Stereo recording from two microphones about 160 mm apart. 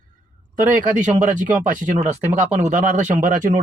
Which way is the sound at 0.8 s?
50° right (ahead or behind).